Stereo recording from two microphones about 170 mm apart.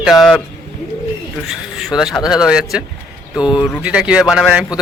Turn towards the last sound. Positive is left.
turn(degrees=-5)  # may be behind; listen again after turning